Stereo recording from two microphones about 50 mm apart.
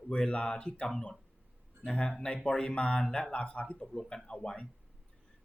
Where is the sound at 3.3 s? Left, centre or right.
Left.